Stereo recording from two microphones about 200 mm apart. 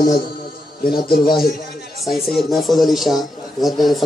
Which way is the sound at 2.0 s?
Centre (ahead or behind).